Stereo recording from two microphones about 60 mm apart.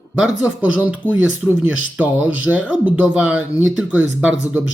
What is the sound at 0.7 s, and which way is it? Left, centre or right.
Speech, right.